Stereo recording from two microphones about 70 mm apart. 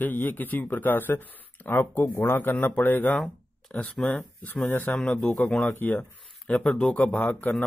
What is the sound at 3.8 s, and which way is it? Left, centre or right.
Speech, centre.